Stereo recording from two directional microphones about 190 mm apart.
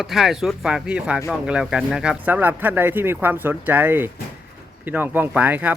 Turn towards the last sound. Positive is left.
turn(degrees=-10)  # may be behind; listen again after turning